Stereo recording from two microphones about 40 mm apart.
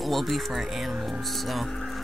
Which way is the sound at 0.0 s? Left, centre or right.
Centre.